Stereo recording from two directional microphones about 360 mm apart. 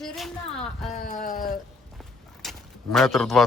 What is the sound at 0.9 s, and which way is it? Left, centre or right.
Speech, left.